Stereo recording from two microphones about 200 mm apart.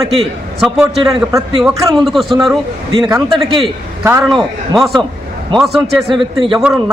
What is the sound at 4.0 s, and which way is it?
Speech, 15° right (ahead or behind).